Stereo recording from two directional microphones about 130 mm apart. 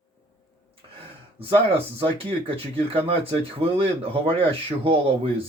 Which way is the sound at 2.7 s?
50° right (ahead or behind).